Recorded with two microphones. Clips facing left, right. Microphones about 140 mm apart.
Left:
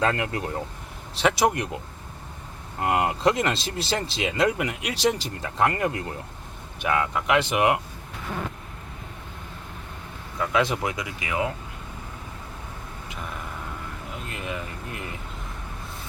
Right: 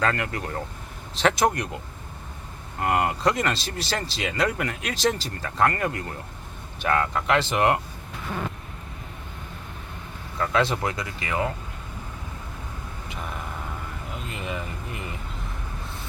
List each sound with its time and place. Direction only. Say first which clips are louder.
0.0 s speech: left 1 dB; 20° left (ahead or behind)
1.1 s speech: even; 10° left (ahead or behind)
1.5 s speech: left 1 dB; 20° left (ahead or behind)
2.8 s speech: left 1 dB; 20° left (ahead or behind)
6.8 s speech: right 1 dB; 10° left (ahead or behind)
10.3 s speech: even; 10° left (ahead or behind)
14.1 s speech: right 1 dB; centre (ahead or behind)